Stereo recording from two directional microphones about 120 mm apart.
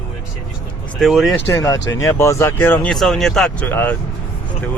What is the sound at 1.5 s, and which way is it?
Speech, 25° left (ahead or behind).